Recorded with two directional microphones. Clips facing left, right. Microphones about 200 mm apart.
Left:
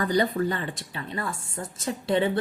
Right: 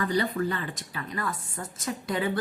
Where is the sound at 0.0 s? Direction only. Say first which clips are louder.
Left 3 dB; 35° left (ahead or behind).